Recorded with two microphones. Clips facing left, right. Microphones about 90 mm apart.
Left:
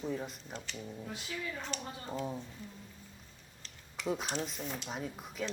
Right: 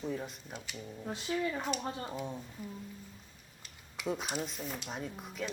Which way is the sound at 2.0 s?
Centre (ahead or behind).